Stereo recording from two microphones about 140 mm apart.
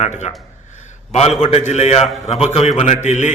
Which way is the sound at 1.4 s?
55° left (ahead or behind).